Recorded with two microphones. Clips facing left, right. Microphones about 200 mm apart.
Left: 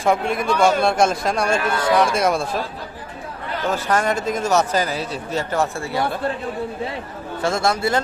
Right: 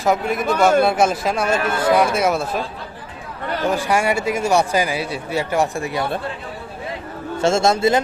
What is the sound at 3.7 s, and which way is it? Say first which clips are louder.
A man's voice: even; 10° right (ahead or behind).